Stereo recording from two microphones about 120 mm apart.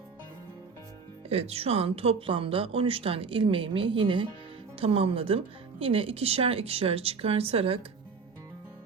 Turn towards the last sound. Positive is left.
turn(degrees=-55)  # may be behind; listen again after turning